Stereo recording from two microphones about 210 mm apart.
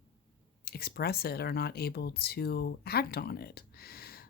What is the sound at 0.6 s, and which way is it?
Speech, 45° left (ahead or behind).